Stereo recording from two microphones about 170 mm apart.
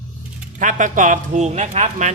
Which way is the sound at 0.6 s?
50° right (ahead or behind).